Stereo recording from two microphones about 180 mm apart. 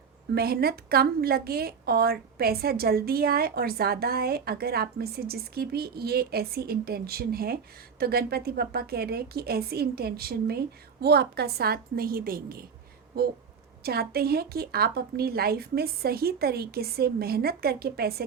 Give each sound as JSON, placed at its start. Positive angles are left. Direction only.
{"t": 0.3, "sound": "a woman's voice", "side_deg": -60}
{"t": 13.8, "sound": "a woman's voice", "side_deg": -60}